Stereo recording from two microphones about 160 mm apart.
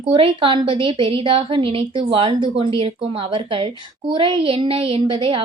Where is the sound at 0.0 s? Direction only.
30° right (ahead or behind).